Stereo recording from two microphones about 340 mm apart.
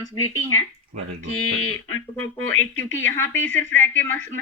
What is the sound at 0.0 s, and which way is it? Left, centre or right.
Speech, centre.